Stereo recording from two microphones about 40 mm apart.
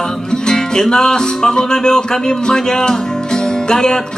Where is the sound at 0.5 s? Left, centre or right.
Centre.